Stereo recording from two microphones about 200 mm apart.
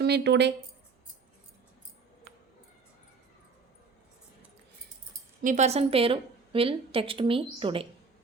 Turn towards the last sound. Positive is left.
turn(degrees=-25)  # may be behind; listen again after turning